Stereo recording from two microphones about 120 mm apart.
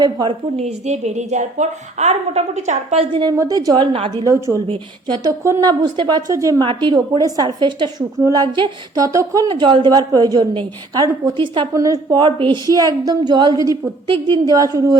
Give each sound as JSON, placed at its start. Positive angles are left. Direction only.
{"t": 0.0, "sound": "a woman's voice", "side_deg": -35}
{"t": 0.5, "sound": "a woman's voice", "side_deg": -65}
{"t": 3.0, "sound": "a woman's voice", "side_deg": -40}
{"t": 3.3, "sound": "a woman's voice", "side_deg": -30}
{"t": 3.8, "sound": "a woman's voice", "side_deg": -45}
{"t": 5.4, "sound": "a woman's voice", "side_deg": -25}
{"t": 6.7, "sound": "a woman's voice", "side_deg": -40}
{"t": 9.5, "sound": "a woman's voice", "side_deg": -40}
{"t": 11.7, "sound": "a woman's voice", "side_deg": -30}
{"t": 12.2, "sound": "a woman's voice", "side_deg": -40}
{"t": 14.5, "sound": "a woman's voice", "side_deg": -30}